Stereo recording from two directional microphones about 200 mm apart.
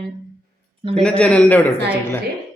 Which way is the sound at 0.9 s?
5° left (ahead or behind).